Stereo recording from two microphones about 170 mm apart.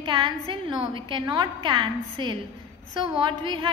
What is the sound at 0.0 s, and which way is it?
A woman's voice, 30° right (ahead or behind).